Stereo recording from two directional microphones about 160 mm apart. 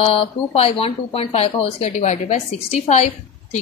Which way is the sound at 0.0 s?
40° left (ahead or behind).